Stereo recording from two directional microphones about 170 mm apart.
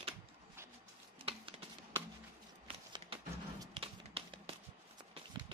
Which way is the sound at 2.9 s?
30° right (ahead or behind).